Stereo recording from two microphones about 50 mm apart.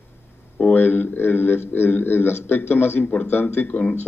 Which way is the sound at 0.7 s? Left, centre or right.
Left.